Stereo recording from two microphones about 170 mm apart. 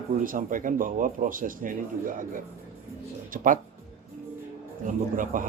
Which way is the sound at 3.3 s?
50° right (ahead or behind).